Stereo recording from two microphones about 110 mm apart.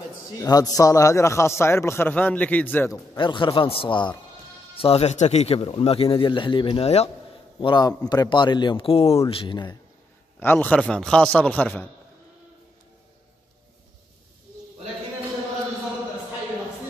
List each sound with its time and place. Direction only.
0.4 s a man's voice: 35° left (ahead or behind); by 2.9 s 15° left (ahead or behind)
3.2 s a man's voice: 45° left (ahead or behind)
4.7 s speech: 60° left (ahead or behind)
7.6 s a man's voice: 40° left (ahead or behind)
10.4 s a man's voice: 20° left (ahead or behind)